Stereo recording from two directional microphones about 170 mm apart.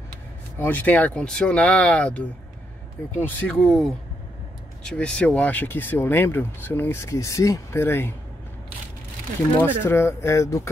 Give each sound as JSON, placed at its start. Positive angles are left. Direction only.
{"t": 0.6, "sound": "speech", "side_deg": 10}
{"t": 3.3, "sound": "speech", "side_deg": 5}
{"t": 9.6, "sound": "speech", "side_deg": 15}